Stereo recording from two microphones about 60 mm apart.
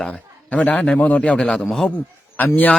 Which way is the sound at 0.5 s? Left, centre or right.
Left.